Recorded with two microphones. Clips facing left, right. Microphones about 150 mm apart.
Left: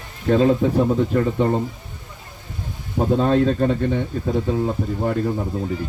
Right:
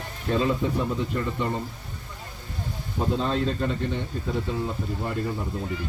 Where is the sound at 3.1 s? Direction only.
55° left (ahead or behind).